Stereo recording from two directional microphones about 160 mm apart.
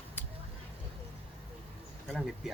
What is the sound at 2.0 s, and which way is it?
Speech, centre (ahead or behind).